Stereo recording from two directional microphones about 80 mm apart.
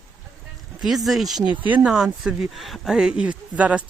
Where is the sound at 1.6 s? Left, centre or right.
Right.